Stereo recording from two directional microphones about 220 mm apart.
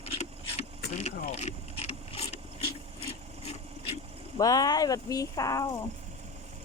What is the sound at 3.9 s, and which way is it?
Speech, 15° left (ahead or behind).